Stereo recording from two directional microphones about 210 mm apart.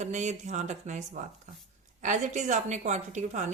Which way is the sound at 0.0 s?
35° right (ahead or behind).